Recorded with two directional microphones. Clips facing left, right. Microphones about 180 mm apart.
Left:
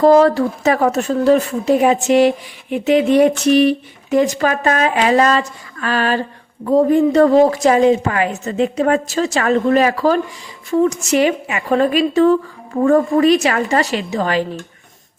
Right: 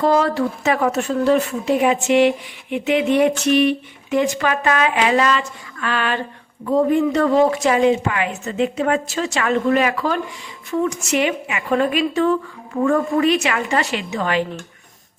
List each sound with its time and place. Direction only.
0.0 s speech: 40° left (ahead or behind)